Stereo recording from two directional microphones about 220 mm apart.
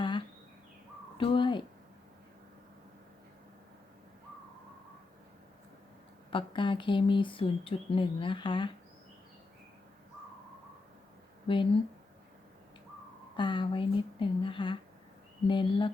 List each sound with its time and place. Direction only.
1.2 s a sound: 25° left (ahead or behind)
6.3 s speech: 20° left (ahead or behind)
11.4 s speech: 25° left (ahead or behind)
13.3 s speech: 20° left (ahead or behind)